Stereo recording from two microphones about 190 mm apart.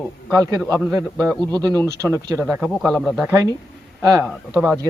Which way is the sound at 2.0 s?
15° right (ahead or behind).